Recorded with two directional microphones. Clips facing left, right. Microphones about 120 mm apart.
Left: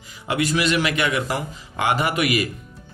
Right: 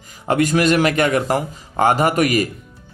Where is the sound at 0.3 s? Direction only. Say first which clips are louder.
Right 5 dB; 45° right (ahead or behind).